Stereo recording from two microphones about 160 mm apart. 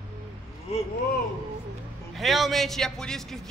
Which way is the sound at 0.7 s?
40° left (ahead or behind).